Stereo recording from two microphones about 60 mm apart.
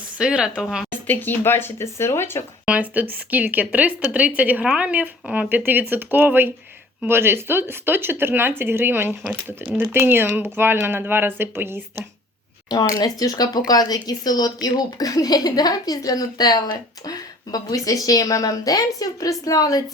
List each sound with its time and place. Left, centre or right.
0.2 s a woman's voice: centre
1.0 s speech: left
2.9 s a woman's voice: right
12.6 s speech: left